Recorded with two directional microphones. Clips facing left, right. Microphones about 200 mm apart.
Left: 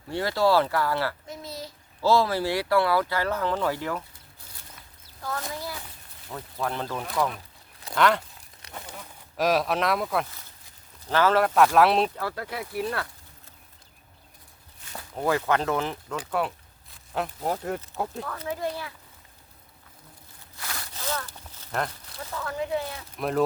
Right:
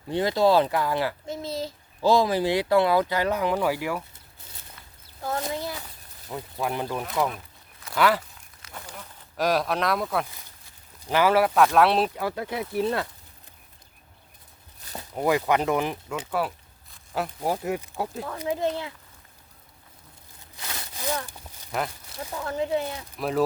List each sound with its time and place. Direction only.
0.1 s a child's voice: 20° right (ahead or behind)
5.2 s a child's voice: 25° right (ahead or behind)
7.9 s speech: 5° right (ahead or behind)
9.4 s speech: centre (ahead or behind)
11.0 s speech: 15° right (ahead or behind)
12.1 s speech: 15° right (ahead or behind)
14.9 s a child's voice: 15° right (ahead or behind)
18.3 s speech: 20° right (ahead or behind)
20.6 s a sound: 20° right (ahead or behind)
22.1 s speech: 15° right (ahead or behind)
23.1 s speech: centre (ahead or behind)